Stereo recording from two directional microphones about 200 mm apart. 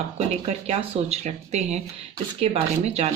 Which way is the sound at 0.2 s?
30° right (ahead or behind).